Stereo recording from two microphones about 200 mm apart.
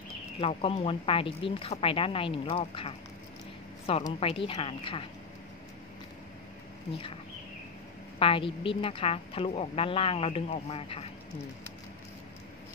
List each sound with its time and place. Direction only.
0.4 s a woman's voice: 30° left (ahead or behind)
8.2 s a woman's voice: 25° left (ahead or behind)